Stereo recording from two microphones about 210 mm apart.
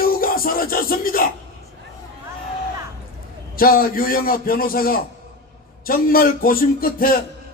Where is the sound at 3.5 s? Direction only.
45° left (ahead or behind).